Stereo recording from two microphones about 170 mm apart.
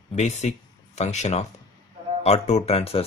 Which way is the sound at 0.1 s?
40° left (ahead or behind).